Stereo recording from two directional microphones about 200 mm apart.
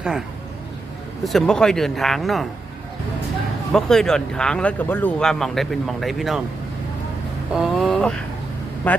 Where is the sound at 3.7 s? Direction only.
Centre (ahead or behind).